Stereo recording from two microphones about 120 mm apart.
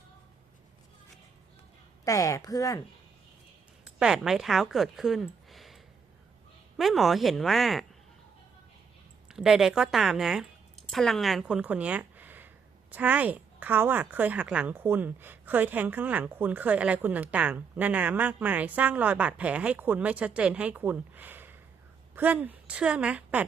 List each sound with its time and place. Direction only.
2.0 s speech: 25° left (ahead or behind)
3.8 s speech: 5° right (ahead or behind)
9.3 s a woman's voice: 5° right (ahead or behind)